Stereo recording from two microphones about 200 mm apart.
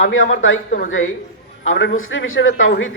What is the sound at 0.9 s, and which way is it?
Speech, 80° left.